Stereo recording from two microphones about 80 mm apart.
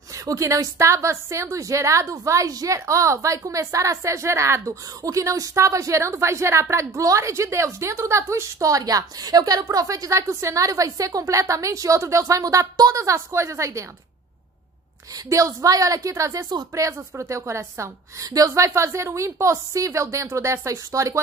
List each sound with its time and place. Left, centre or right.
0.1 s a woman's voice: right
15.1 s a woman's voice: right